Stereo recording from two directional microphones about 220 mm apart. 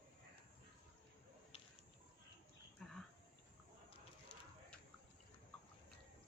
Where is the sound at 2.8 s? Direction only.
5° left (ahead or behind).